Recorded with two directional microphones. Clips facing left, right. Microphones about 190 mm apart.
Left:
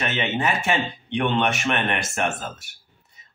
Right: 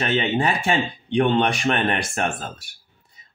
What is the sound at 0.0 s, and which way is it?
A man's voice, 35° right (ahead or behind).